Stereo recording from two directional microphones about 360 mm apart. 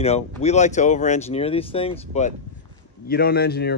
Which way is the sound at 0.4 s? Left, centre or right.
Centre.